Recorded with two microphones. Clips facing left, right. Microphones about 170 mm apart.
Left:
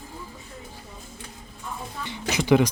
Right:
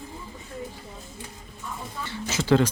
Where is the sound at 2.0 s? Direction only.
15° left (ahead or behind).